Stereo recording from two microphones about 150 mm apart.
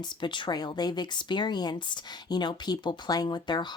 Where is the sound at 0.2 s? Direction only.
30° left (ahead or behind).